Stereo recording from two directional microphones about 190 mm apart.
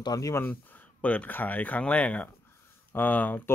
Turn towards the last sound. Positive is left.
turn(degrees=10)  # may be behind; listen again after turning